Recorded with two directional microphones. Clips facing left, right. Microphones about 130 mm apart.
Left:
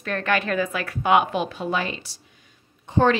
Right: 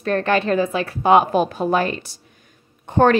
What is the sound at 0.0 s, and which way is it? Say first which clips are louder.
A woman's voice: right 5 dB; 35° right (ahead or behind).